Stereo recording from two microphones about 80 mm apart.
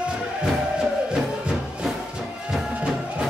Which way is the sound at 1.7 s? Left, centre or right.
Centre.